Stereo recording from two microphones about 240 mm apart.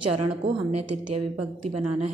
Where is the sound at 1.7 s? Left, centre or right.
Right.